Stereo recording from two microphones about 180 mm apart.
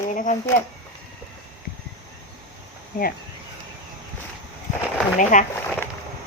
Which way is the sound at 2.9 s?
50° left (ahead or behind).